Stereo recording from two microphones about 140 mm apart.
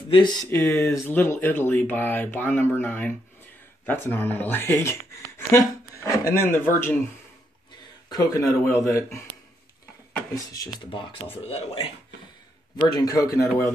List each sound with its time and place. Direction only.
0.1 s speech: 30° left (ahead or behind)
0.5 s speech: 15° left (ahead or behind)
8.1 s speech: 25° left (ahead or behind)
10.3 s speech: 25° left (ahead or behind)
10.9 s speech: 35° left (ahead or behind)
12.8 s speech: 30° left (ahead or behind)